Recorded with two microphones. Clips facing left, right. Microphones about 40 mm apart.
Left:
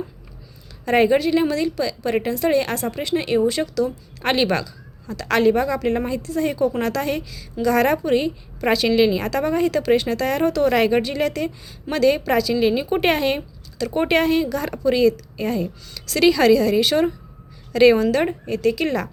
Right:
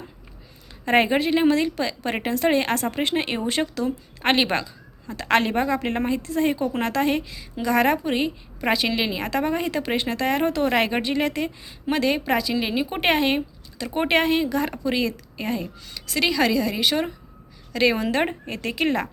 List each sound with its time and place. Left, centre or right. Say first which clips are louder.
0.9 s a woman's voice: left 3 dB; right
16.1 s a woman's voice: left 6 dB; centre
18.0 s a woman's voice: left 4 dB; right